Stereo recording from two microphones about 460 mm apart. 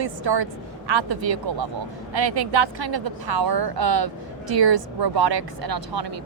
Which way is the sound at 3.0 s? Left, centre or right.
Right.